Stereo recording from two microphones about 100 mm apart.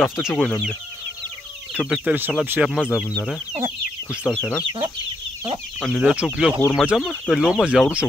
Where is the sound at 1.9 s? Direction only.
15° right (ahead or behind).